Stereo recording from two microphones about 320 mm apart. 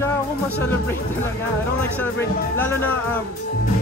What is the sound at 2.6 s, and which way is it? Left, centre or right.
Music, centre.